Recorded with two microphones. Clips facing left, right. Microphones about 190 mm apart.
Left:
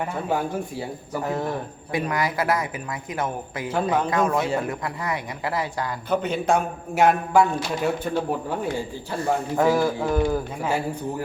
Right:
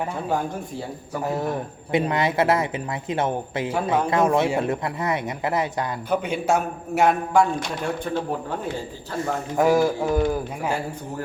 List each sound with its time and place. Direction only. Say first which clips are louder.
1.9 s a man's voice: right 3 dB; 25° right (ahead or behind)
6.1 s a man's voice: left 1 dB; 10° right (ahead or behind)
6.9 s a man's voice: even; centre (ahead or behind)
9.6 s a man's voice: right 3 dB; 15° right (ahead or behind)